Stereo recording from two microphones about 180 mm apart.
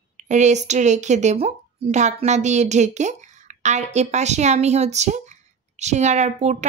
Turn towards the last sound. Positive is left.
turn(degrees=-40)  # may be behind; listen again after turning